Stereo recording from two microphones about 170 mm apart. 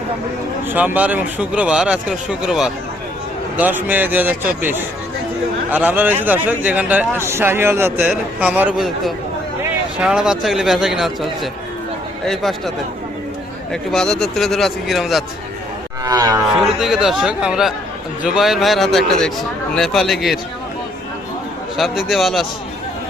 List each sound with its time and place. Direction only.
0.7 s a man's voice: 10° right (ahead or behind)
12.2 s a man's voice: centre (ahead or behind)
13.9 s a man's voice: 5° left (ahead or behind)
16.0 s livestock: 20° right (ahead or behind)
16.6 s a man's voice: centre (ahead or behind)
21.8 s a man's voice: centre (ahead or behind)